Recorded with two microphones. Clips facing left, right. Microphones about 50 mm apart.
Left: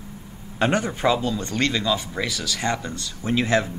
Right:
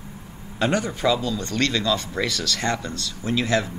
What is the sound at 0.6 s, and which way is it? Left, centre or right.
Speech, left.